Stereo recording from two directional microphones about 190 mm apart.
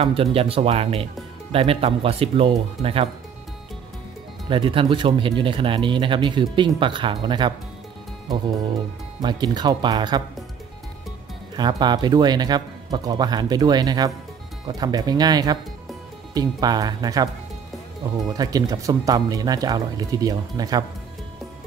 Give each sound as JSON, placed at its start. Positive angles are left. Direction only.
{"t": 0.0, "sound": "speech", "side_deg": -30}
{"t": 4.5, "sound": "speech", "side_deg": -25}
{"t": 9.2, "sound": "speech", "side_deg": -20}
{"t": 11.5, "sound": "speech", "side_deg": -25}
{"t": 18.4, "sound": "speech", "side_deg": -20}